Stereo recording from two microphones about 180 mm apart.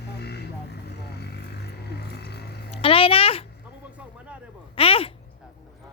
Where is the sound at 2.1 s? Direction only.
65° left (ahead or behind).